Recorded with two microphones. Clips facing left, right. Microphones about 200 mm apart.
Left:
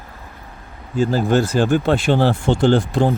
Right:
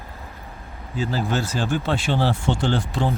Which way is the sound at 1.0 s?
50° left (ahead or behind).